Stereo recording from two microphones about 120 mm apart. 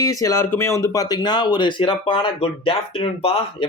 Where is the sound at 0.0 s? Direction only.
30° left (ahead or behind).